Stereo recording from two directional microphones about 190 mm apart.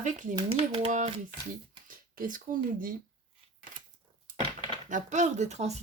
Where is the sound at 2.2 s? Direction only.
45° right (ahead or behind).